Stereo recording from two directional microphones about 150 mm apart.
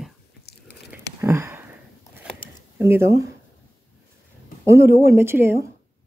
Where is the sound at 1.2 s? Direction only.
15° right (ahead or behind).